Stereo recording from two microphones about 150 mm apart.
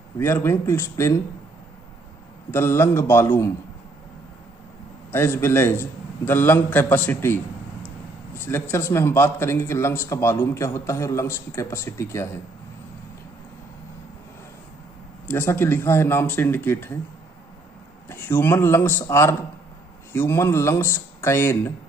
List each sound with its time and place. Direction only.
0.2 s speech: 15° left (ahead or behind)
2.5 s speech: 15° left (ahead or behind)
5.1 s speech: 15° left (ahead or behind)
8.5 s speech: 15° left (ahead or behind)
15.2 s speech: 15° left (ahead or behind)
18.0 s speech: 15° left (ahead or behind)